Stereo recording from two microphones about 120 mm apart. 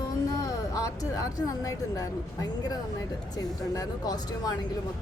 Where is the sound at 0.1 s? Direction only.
30° left (ahead or behind).